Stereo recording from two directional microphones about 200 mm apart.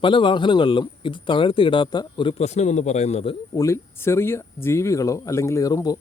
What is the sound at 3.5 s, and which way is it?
Speech, 15° left (ahead or behind).